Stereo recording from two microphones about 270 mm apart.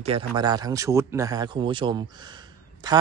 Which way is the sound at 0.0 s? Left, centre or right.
Centre.